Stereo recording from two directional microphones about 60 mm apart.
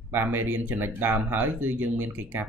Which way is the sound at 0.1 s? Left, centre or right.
Right.